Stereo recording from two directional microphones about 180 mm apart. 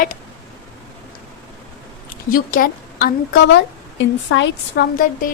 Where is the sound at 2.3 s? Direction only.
55° left (ahead or behind).